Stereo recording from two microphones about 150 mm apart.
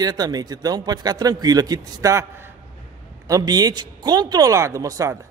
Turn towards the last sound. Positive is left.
turn(degrees=-20)  # may be behind; listen again after turning